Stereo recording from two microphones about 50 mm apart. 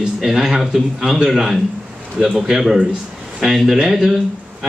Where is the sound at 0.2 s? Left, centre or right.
Centre.